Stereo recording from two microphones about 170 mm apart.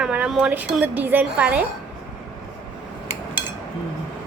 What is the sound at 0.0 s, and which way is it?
A woman's voice, 5° right (ahead or behind).